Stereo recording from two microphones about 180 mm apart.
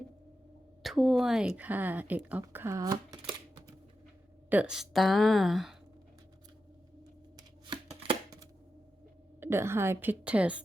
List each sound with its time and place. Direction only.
0.8 s speech: centre (ahead or behind); by 3.8 s 30° right (ahead or behind)
4.4 s a woman's voice: 5° right (ahead or behind)
8.0 s a sound: 20° right (ahead or behind)
9.4 s a woman's voice: 15° right (ahead or behind)